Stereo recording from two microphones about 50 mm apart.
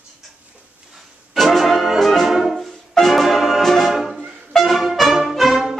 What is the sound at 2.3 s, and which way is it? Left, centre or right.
Music, centre.